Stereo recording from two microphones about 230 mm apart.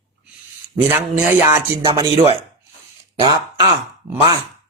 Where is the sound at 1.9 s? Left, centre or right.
Right.